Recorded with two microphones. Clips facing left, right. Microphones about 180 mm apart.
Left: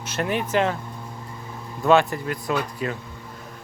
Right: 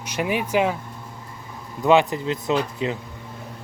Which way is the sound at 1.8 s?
15° right (ahead or behind).